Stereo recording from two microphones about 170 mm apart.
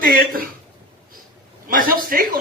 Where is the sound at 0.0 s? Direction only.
55° right (ahead or behind).